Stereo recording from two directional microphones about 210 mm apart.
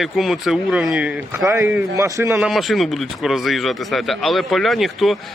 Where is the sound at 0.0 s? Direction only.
Centre (ahead or behind).